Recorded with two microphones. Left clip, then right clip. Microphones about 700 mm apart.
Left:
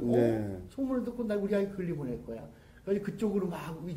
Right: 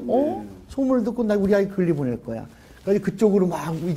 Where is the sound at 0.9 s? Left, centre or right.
Right.